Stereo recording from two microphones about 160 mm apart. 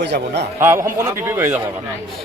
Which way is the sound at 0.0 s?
90° right.